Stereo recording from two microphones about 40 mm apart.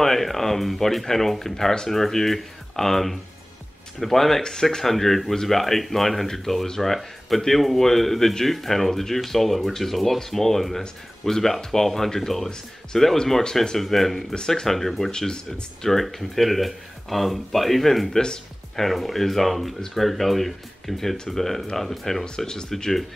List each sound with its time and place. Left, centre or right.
0.0 s speech: centre
14.3 s speech: centre
15.0 s speech: centre
15.9 s speech: centre
22.4 s speech: centre
22.7 s speech: centre